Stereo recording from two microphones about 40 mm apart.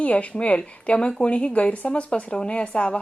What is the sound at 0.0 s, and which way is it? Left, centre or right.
A woman's voice, left.